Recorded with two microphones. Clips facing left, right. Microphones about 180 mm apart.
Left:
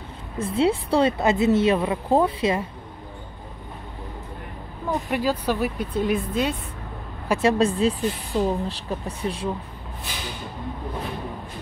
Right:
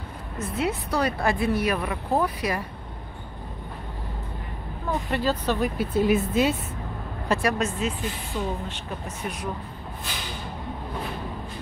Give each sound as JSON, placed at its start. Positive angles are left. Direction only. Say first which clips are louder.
{"t": 0.4, "sound": "a woman's voice", "louder": "left 6 dB", "side_deg": 30}
{"t": 5.1, "sound": "speech", "louder": "left 1 dB", "side_deg": 10}
{"t": 5.8, "sound": "speech", "louder": "right 2 dB", "side_deg": -5}
{"t": 7.4, "sound": "speech", "louder": "left 11 dB", "side_deg": 30}